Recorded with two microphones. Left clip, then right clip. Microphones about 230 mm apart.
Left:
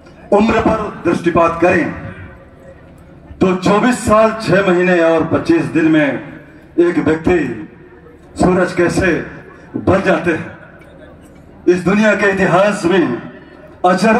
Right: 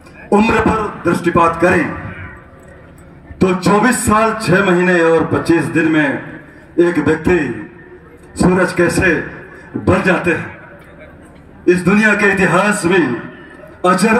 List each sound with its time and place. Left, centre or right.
0.3 s a man's voice: right
3.3 s a man's voice: right
8.4 s a man's voice: right
11.6 s a man's voice: right
13.7 s a sound: right